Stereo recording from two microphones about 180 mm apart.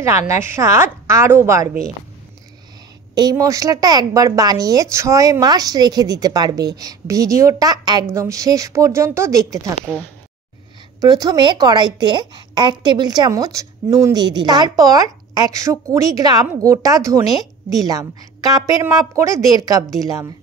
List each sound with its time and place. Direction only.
0.0 s a woman's voice: 15° right (ahead or behind)
3.2 s a woman's voice: 20° right (ahead or behind)
11.0 s a woman's voice: 20° right (ahead or behind)